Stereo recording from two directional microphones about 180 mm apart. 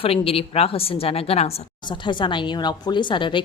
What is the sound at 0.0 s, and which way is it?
A woman's voice, 30° left (ahead or behind).